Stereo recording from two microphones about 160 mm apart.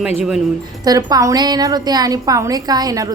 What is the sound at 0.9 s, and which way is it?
A woman's voice, 20° right (ahead or behind).